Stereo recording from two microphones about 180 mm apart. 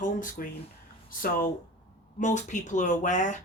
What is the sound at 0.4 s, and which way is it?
Speech, 50° left (ahead or behind).